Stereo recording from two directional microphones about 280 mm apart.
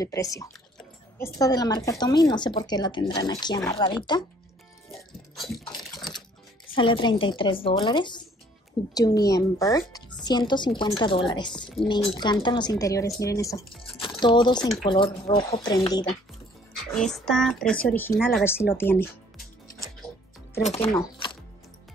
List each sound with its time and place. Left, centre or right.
0.0 s speech: centre
4.9 s music: centre
5.9 s a sound: centre
6.7 s speech: centre
17.1 s speech: centre
20.6 s speech: left